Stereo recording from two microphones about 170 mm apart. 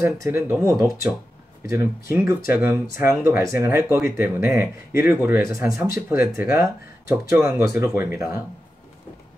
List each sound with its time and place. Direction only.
0.0 s speech: 15° right (ahead or behind)